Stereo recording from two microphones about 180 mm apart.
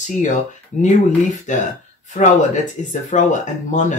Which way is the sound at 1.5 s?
45° left (ahead or behind).